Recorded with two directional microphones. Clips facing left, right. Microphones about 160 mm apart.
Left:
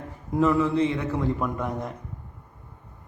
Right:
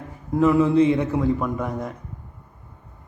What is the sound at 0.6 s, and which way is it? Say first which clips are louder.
Speech: right 6 dB; 15° right (ahead or behind).